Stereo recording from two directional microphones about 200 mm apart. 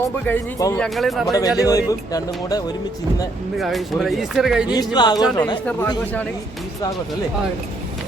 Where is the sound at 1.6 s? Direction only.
15° left (ahead or behind).